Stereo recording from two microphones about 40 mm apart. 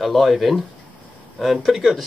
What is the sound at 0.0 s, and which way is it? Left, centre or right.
Speech, centre.